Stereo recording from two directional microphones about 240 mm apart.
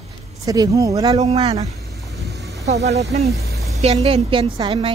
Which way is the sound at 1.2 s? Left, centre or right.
Right.